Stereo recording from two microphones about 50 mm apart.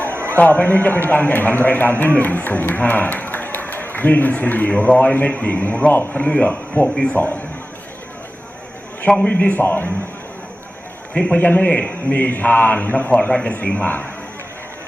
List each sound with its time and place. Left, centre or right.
0.3 s speech: left
5.9 s a man's voice: left
6.1 s a man's voice: left
6.8 s speech: centre
7.1 s speech: left
9.0 s a man's voice: centre
9.4 s speech: left
11.1 s a man's voice: centre
11.3 s a man's voice: left
12.2 s a man's voice: left